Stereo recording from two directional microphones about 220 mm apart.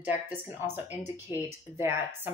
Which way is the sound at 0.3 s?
10° right (ahead or behind).